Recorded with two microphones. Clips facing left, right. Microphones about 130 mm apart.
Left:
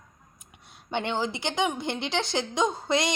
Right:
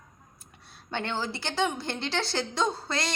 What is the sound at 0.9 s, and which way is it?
Speech, 20° left (ahead or behind).